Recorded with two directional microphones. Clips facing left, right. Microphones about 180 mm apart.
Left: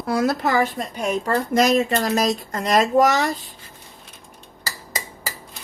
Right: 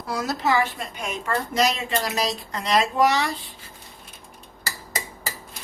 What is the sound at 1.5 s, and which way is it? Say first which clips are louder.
Speech: left 6 dB; 50° left (ahead or behind).